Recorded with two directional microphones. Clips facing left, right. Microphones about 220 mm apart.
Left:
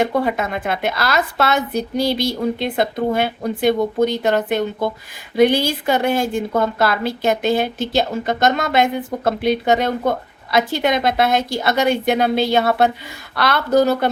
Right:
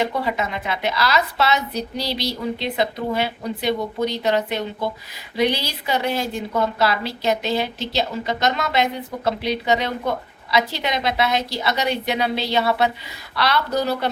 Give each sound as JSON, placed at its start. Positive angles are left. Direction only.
{"t": 0.0, "sound": "a woman's voice", "side_deg": 50}